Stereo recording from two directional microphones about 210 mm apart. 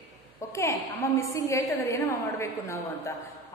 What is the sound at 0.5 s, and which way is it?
A woman's voice, 15° left (ahead or behind).